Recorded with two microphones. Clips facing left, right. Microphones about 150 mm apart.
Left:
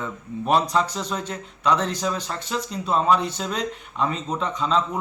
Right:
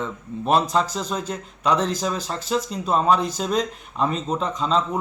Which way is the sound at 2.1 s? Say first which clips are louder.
Right 1 dB; 35° right (ahead or behind).